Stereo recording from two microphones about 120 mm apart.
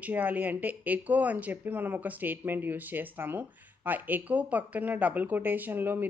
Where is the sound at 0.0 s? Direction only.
15° right (ahead or behind).